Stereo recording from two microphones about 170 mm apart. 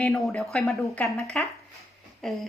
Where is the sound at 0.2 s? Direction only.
Centre (ahead or behind).